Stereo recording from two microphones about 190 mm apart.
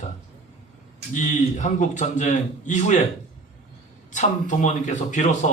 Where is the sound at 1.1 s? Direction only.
40° left (ahead or behind).